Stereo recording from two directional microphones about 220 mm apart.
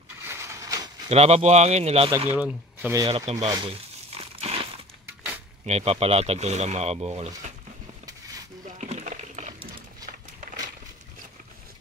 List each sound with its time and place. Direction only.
0.2 s a sound: 10° right (ahead or behind)
1.0 s speech: 30° right (ahead or behind)
2.0 s speech: 10° right (ahead or behind)
3.1 s speech: 25° right (ahead or behind)
4.2 s crumpling: 25° right (ahead or behind)
5.7 s speech: 25° right (ahead or behind)
8.6 s a sound: 30° right (ahead or behind)